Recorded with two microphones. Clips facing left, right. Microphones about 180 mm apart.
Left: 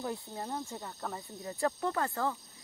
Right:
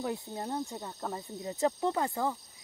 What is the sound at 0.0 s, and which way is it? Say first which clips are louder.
Speech: right 3 dB; 20° right (ahead or behind).